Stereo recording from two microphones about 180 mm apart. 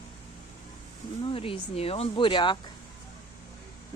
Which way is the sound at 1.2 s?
30° left (ahead or behind).